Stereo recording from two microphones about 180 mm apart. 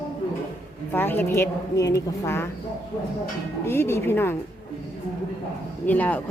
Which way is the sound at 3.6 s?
15° left (ahead or behind).